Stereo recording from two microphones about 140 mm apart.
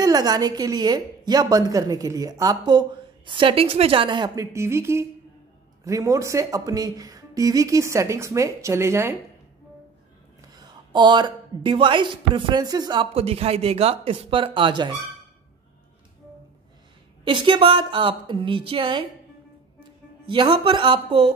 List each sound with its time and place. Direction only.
0.0 s speech: 25° right (ahead or behind)
4.5 s speech: 20° right (ahead or behind)
10.5 s speech: 30° right (ahead or behind)
17.2 s speech: 35° right (ahead or behind)
20.2 s speech: 35° right (ahead or behind)